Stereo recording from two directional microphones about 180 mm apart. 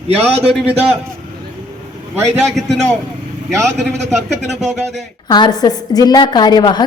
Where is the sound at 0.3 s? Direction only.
Centre (ahead or behind).